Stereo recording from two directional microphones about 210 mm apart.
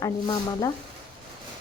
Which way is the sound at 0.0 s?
15° left (ahead or behind).